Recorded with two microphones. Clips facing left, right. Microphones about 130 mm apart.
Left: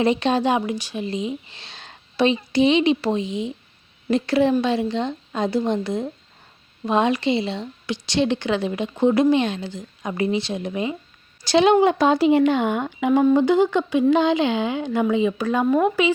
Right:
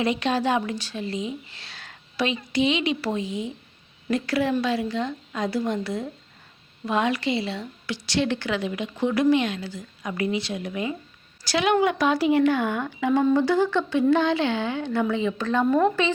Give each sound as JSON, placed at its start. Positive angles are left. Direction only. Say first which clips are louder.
{"t": 0.0, "sound": "a woman's voice", "louder": "left 4 dB", "side_deg": 25}